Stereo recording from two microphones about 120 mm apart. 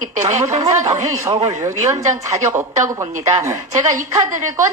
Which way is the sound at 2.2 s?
25° right (ahead or behind).